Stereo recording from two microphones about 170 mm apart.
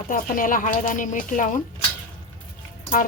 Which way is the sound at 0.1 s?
55° left (ahead or behind).